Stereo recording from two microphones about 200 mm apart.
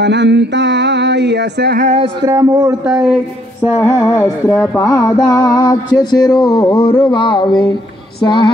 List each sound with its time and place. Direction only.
0.0 s a sound: 60° right (ahead or behind)
2.2 s a man's voice: 15° right (ahead or behind)
2.9 s speech: 5° right (ahead or behind)
3.7 s music: 15° left (ahead or behind)
4.7 s speech: 20° left (ahead or behind)